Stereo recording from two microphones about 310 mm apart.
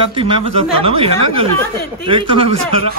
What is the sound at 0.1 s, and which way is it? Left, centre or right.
A woman's voice, centre.